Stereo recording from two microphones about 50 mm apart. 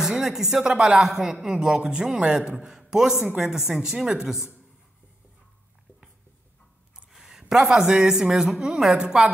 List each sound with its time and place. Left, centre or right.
0.0 s a man's voice: centre
3.6 s speech: centre
7.1 s a woman's voice: centre